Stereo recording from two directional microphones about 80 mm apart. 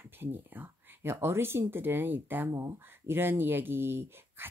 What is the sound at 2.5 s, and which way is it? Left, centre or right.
Speech, right.